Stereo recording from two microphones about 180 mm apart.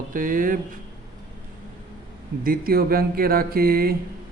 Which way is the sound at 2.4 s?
55° right (ahead or behind).